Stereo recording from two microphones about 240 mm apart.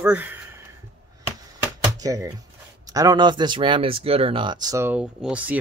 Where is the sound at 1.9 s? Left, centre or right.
Centre.